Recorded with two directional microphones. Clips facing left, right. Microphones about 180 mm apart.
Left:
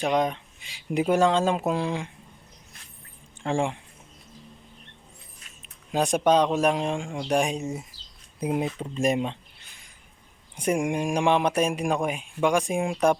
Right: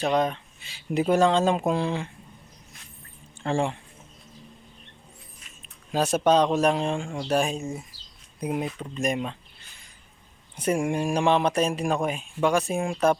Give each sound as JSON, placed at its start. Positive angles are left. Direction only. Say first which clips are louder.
{"t": 0.0, "sound": "speech", "louder": "even", "side_deg": 10}
{"t": 3.4, "sound": "speech", "louder": "even", "side_deg": 10}
{"t": 5.9, "sound": "speech", "louder": "even", "side_deg": 15}
{"t": 10.6, "sound": "speech", "louder": "even", "side_deg": 15}